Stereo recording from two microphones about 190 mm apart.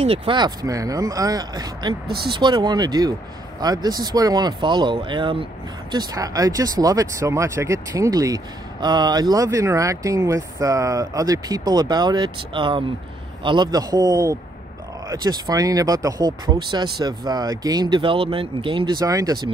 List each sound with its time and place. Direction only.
0.0 s speech: 30° right (ahead or behind)